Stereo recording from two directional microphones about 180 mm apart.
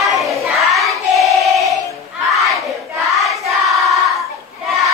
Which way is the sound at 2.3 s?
Centre (ahead or behind).